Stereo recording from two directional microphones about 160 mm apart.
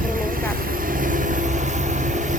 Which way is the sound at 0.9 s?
55° right (ahead or behind).